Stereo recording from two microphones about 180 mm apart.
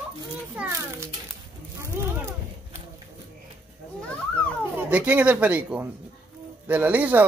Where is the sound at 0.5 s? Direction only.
15° right (ahead or behind).